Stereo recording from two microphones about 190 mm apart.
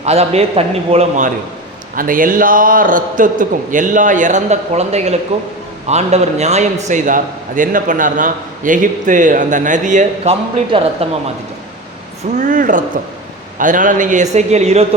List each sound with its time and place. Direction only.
0.0 s a man's voice: 35° right (ahead or behind)
10.7 s speech: 30° right (ahead or behind)
12.4 s a man's voice: 45° right (ahead or behind)